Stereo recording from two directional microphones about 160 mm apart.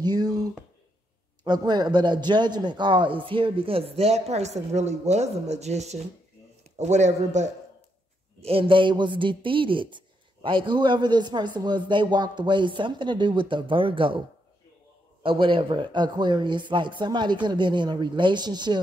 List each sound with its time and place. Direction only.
0.0 s a man's voice: 25° right (ahead or behind); by 7.4 s 45° right (ahead or behind)
8.4 s a man's voice: 35° right (ahead or behind)
15.2 s a man's voice: 30° right (ahead or behind)